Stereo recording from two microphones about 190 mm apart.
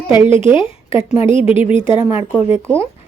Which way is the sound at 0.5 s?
30° left (ahead or behind).